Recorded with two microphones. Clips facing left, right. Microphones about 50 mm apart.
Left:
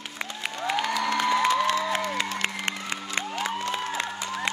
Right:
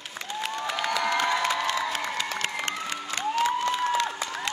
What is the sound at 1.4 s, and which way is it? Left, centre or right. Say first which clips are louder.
Crowd: left 3 dB; left.